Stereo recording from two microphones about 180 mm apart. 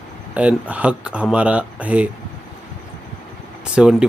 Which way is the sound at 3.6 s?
5° right (ahead or behind).